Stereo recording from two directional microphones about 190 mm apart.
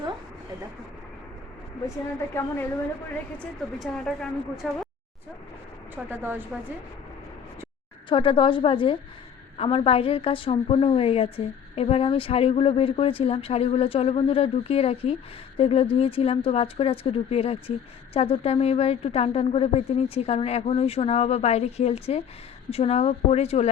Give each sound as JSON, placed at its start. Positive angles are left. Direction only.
{"t": 2.3, "sound": "a woman's voice", "side_deg": 10}
{"t": 3.8, "sound": "a woman's voice", "side_deg": 5}
{"t": 6.1, "sound": "a woman's voice", "side_deg": -10}
{"t": 8.1, "sound": "a woman's voice", "side_deg": 25}